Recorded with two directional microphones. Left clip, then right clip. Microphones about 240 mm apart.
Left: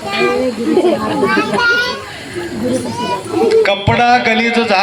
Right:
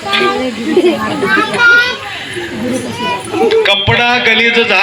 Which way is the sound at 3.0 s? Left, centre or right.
Left.